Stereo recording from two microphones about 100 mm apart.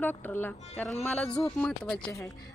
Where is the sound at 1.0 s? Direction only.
10° left (ahead or behind).